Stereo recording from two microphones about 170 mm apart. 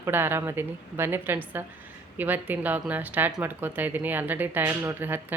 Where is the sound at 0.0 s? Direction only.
10° right (ahead or behind).